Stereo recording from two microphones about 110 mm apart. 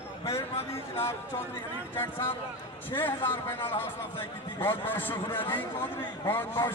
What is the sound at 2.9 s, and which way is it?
A man's voice, 20° left (ahead or behind).